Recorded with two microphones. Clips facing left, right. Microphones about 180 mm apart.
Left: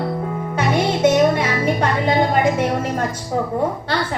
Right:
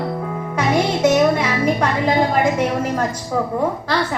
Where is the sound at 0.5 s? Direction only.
30° left (ahead or behind).